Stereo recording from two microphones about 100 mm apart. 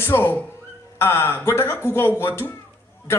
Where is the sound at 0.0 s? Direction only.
25° left (ahead or behind).